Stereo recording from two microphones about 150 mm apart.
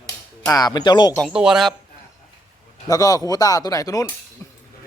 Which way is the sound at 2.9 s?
25° left (ahead or behind).